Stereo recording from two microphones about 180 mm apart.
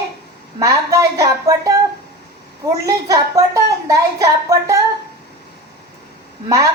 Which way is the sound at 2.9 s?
20° right (ahead or behind).